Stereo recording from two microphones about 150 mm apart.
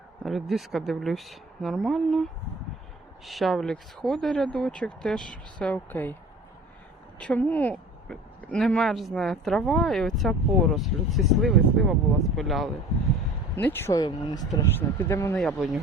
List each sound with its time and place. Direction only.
0.2 s speech: centre (ahead or behind)
3.2 s speech: centre (ahead or behind)
7.2 s speech: 10° left (ahead or behind)
13.6 s speech: 15° left (ahead or behind)
14.0 s speech: 25° left (ahead or behind)
15.4 s speech: centre (ahead or behind)